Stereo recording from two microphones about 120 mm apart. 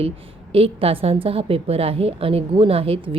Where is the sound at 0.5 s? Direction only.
55° right (ahead or behind).